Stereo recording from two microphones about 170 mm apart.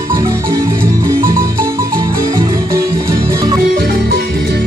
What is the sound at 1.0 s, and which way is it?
Music, 55° right (ahead or behind).